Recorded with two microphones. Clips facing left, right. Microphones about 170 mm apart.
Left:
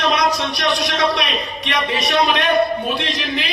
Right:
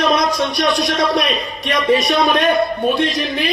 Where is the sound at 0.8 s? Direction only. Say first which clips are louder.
Right 3 dB; 45° right (ahead or behind).